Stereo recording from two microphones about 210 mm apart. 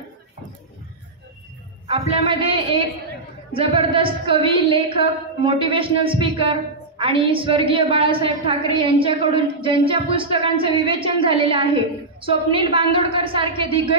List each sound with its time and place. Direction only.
1.9 s a woman's voice: 30° right (ahead or behind)